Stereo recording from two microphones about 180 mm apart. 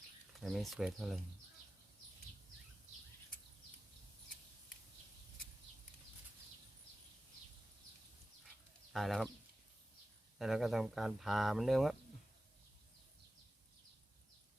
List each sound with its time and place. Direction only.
0.3 s speech: centre (ahead or behind)
8.9 s speech: centre (ahead or behind)
10.3 s speech: centre (ahead or behind)